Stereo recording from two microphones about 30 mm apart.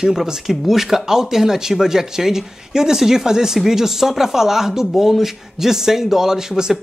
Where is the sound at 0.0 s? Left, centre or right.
Centre.